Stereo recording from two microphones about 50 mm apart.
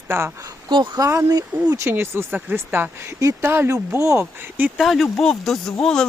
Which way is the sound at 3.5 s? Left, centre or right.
Right.